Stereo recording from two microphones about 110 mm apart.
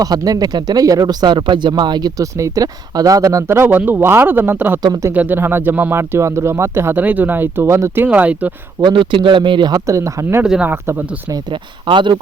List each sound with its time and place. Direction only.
0.0 s speech: 35° right (ahead or behind); by 8.5 s 15° right (ahead or behind)
8.8 s speech: 45° right (ahead or behind); by 10.4 s 25° right (ahead or behind)
10.4 s speech: 5° right (ahead or behind)
10.7 s speech: 20° right (ahead or behind)
11.9 s speech: 45° right (ahead or behind)